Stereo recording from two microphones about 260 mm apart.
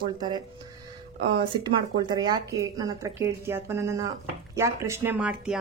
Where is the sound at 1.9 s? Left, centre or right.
Centre.